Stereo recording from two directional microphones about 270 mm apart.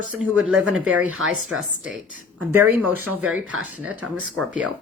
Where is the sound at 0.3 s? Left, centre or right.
Centre.